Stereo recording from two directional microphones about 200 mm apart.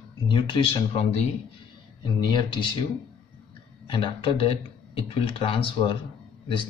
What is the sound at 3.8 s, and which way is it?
Speech, 25° left (ahead or behind).